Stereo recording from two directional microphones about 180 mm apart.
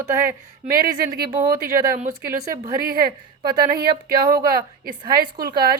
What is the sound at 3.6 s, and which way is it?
Speech, 60° right (ahead or behind).